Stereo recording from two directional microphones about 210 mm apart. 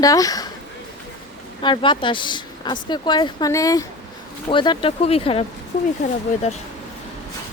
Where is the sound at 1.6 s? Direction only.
20° left (ahead or behind).